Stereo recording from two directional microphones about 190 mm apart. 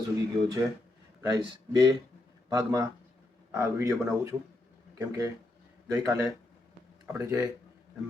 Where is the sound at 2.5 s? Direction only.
20° right (ahead or behind).